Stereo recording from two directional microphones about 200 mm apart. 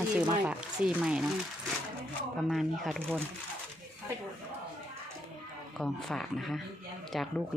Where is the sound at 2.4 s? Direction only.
Centre (ahead or behind).